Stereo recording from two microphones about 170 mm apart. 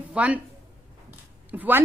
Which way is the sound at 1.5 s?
10° right (ahead or behind).